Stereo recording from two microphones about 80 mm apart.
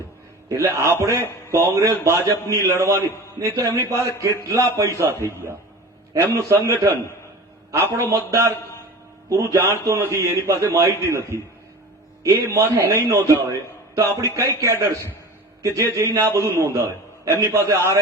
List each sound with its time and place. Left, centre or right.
0.8 s a man's voice: right
6.1 s a man's voice: right